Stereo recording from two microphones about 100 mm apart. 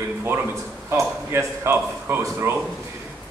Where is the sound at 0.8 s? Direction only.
25° right (ahead or behind).